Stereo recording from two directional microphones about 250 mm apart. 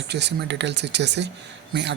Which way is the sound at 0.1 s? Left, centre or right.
Right.